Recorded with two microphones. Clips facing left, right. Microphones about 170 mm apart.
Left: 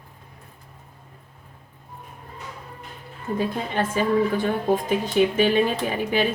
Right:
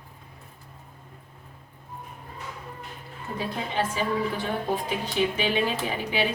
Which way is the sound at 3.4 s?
50° left (ahead or behind).